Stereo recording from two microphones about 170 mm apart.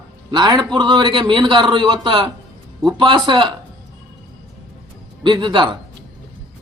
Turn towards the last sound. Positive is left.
turn(degrees=-30)  # may be behind; listen again after turning